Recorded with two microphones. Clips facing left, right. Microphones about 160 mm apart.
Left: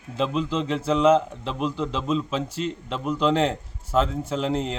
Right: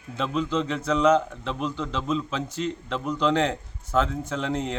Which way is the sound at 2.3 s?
30° left (ahead or behind).